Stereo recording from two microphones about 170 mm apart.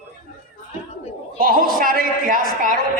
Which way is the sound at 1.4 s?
55° right (ahead or behind).